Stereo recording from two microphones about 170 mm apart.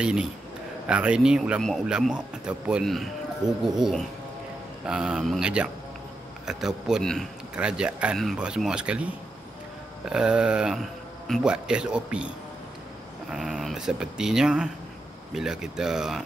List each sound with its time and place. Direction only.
0.0 s speech: 5° right (ahead or behind)
13.3 s speech: centre (ahead or behind)